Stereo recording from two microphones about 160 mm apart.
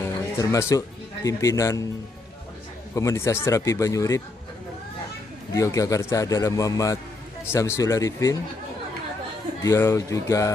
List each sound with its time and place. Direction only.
0.0 s speech: 20° left (ahead or behind)
2.9 s a man's voice: 20° left (ahead or behind)
5.5 s a man's voice: 20° left (ahead or behind)
9.6 s a man's voice: 15° left (ahead or behind)